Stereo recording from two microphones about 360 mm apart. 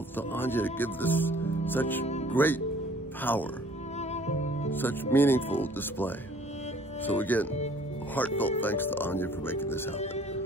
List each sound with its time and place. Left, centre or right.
0.3 s speech: centre
2.0 s music: centre
2.3 s speech: centre
4.1 s music: centre
4.6 s speech: centre